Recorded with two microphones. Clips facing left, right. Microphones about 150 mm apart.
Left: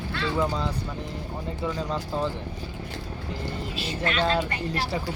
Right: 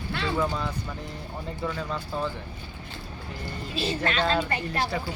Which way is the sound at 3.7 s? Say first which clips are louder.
Right 2 dB; 30° right (ahead or behind).